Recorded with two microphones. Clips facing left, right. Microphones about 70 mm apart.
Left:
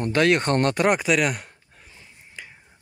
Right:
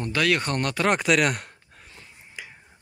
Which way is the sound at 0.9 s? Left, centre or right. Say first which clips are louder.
Even; centre.